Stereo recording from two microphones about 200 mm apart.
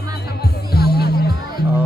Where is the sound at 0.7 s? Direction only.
50° left (ahead or behind).